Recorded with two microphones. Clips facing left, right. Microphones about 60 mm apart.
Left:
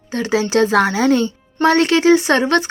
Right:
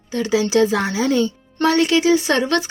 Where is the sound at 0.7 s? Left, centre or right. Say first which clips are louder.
Left 4 dB; left.